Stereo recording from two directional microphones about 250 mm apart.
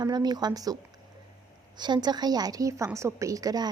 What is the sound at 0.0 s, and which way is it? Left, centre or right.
A woman's voice, centre.